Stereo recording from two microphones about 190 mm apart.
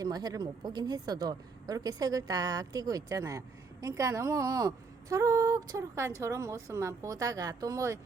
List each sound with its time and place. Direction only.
0.0 s speech: 20° right (ahead or behind)